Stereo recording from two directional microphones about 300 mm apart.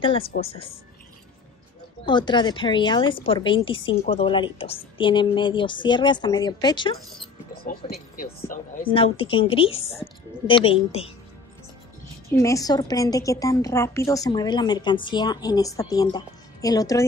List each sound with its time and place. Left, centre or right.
0.0 s a woman's voice: centre
2.0 s a woman's voice: centre
7.5 s a woman's voice: left
8.9 s a woman's voice: centre
12.3 s a woman's voice: centre